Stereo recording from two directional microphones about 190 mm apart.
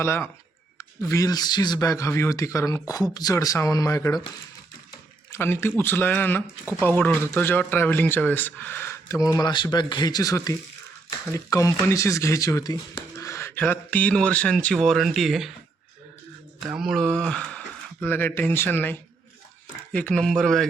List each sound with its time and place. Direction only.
0.0 s speech: 15° left (ahead or behind)
5.3 s speech: 10° left (ahead or behind)
16.7 s speech: centre (ahead or behind)